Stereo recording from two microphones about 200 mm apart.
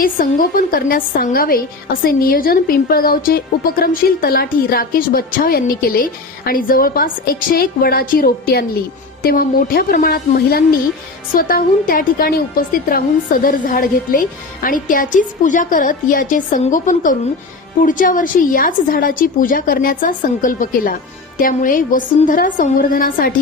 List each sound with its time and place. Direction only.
0.0 s a woman's voice: 45° left (ahead or behind)